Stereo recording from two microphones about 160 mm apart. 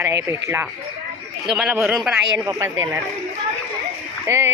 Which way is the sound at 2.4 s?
20° right (ahead or behind).